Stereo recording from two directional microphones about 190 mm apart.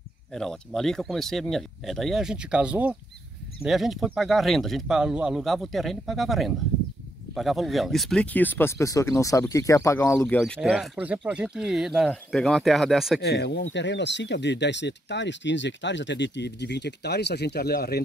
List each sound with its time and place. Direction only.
0.3 s speech: centre (ahead or behind)
10.4 s speech: centre (ahead or behind)
13.2 s speech: 60° left (ahead or behind)